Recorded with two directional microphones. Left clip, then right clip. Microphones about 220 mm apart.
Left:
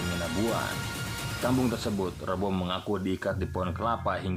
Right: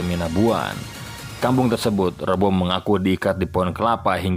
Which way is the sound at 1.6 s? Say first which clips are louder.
Right 10 dB; 35° right (ahead or behind).